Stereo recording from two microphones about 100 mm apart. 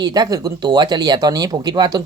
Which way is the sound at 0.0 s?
40° right (ahead or behind).